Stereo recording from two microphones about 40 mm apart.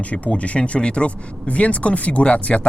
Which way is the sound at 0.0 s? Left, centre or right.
Left.